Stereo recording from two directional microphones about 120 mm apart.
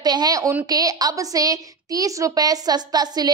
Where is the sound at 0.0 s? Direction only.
35° right (ahead or behind).